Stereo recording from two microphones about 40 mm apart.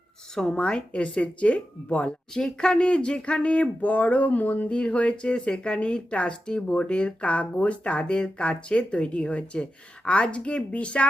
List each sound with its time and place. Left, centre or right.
0.3 s speech: centre
2.3 s speech: centre; by 4.7 s left
4.7 s speech: left